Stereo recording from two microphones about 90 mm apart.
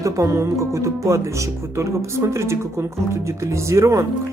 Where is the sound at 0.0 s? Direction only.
40° right (ahead or behind).